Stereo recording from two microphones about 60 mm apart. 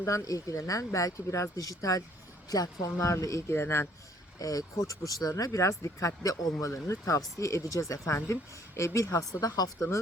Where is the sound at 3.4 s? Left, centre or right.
Left.